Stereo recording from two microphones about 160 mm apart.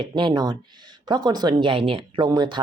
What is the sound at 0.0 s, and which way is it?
Speech, 30° right (ahead or behind).